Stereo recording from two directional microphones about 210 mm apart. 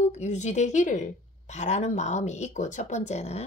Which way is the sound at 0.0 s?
35° left (ahead or behind).